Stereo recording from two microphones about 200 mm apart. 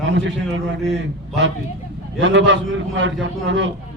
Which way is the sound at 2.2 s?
65° right (ahead or behind).